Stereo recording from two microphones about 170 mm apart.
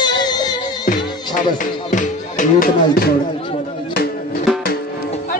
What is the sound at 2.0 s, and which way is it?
Music, 50° left (ahead or behind).